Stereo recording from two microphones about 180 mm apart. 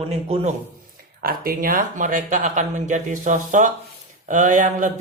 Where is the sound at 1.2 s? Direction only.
55° right (ahead or behind).